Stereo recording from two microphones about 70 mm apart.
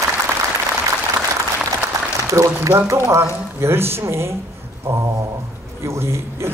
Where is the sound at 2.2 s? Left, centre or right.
Right.